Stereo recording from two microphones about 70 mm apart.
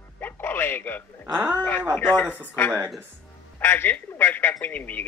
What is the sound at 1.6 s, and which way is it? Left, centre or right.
A man's voice, left.